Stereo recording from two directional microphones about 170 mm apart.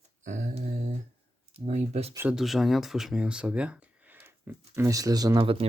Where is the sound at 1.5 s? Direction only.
40° right (ahead or behind).